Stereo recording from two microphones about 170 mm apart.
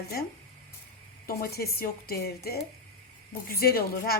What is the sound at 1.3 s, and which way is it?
A woman's voice, 60° left (ahead or behind).